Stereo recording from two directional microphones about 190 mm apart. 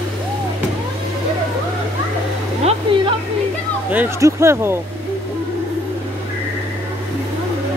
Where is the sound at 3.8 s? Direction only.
10° right (ahead or behind).